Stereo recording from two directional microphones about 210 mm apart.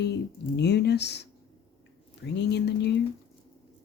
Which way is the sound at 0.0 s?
55° left (ahead or behind).